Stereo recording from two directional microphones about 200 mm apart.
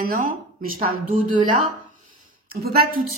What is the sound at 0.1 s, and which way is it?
Speech, 45° right (ahead or behind).